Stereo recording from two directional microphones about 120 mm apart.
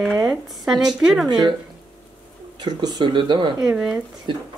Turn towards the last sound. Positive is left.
turn(degrees=-45)  # may be behind; listen again after turning